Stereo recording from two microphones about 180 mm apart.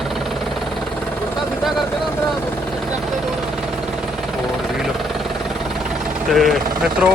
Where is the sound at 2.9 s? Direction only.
Centre (ahead or behind).